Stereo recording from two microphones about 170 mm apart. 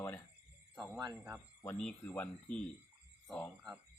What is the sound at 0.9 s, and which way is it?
Speech, 25° right (ahead or behind).